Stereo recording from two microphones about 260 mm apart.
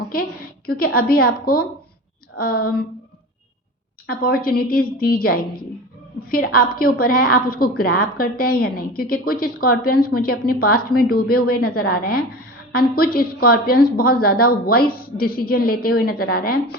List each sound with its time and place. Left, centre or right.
0.1 s a sound: left
0.9 s speech: left
2.4 s speech: left
4.0 s speech: left